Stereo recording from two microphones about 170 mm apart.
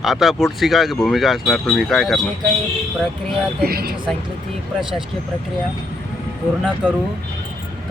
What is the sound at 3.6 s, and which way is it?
Speech, 65° right (ahead or behind).